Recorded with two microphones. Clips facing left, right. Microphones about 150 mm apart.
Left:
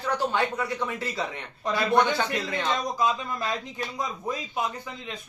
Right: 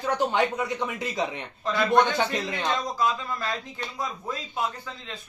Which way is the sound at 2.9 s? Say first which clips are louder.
Even; 15° left (ahead or behind).